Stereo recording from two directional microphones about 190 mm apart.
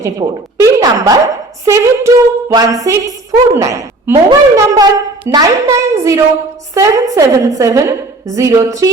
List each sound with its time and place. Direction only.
0.0 s a woman's voice: 15° right (ahead or behind)